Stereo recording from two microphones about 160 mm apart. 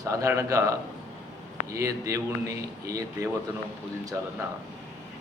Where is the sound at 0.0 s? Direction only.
20° right (ahead or behind).